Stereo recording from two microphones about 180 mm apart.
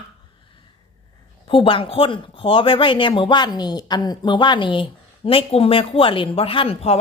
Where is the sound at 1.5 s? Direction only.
30° left (ahead or behind).